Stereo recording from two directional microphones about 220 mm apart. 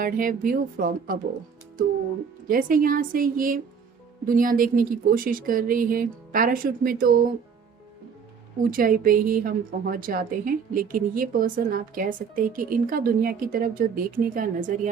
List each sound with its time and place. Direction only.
0.0 s a woman's voice: 40° right (ahead or behind)
2.5 s a woman's voice: 40° right (ahead or behind)
8.7 s a woman's voice: 40° right (ahead or behind)